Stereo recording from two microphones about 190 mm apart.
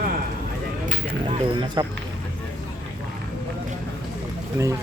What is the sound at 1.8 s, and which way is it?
Speech, 20° right (ahead or behind).